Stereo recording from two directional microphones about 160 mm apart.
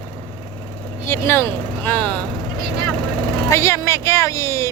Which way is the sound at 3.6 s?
20° left (ahead or behind).